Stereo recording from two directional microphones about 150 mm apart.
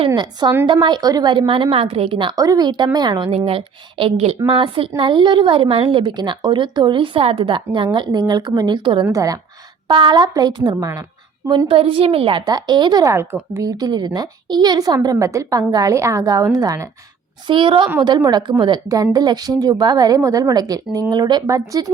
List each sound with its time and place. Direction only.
0.2 s a woman's voice: 30° right (ahead or behind)
11.4 s a woman's voice: 35° right (ahead or behind)
17.4 s a woman's voice: 35° right (ahead or behind)